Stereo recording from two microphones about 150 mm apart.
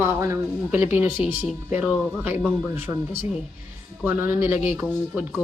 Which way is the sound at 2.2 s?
15° right (ahead or behind).